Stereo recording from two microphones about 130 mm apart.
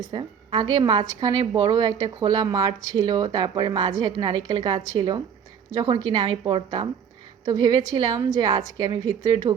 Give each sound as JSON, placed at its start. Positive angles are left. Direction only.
{"t": 0.1, "sound": "a woman's voice", "side_deg": -35}